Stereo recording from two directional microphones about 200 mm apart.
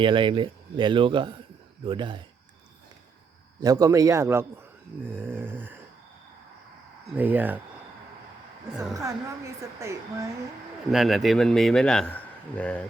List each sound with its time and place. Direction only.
0.0 s speech: 25° right (ahead or behind)
3.6 s a woman's voice: 20° right (ahead or behind)
7.2 s a woman's voice: 10° right (ahead or behind)
9.0 s a woman's voice: 15° right (ahead or behind)
10.9 s a man's voice: centre (ahead or behind)